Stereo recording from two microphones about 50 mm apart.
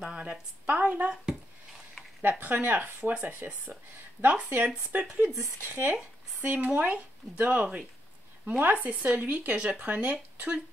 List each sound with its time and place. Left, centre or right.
0.0 s speech: centre
2.4 s speech: right